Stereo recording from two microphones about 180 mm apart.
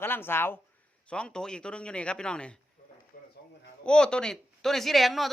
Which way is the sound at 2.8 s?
45° left (ahead or behind).